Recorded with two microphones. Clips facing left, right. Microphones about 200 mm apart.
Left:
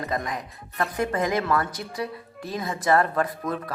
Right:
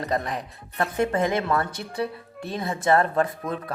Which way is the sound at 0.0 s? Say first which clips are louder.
Right 2 dB; 30° right (ahead or behind).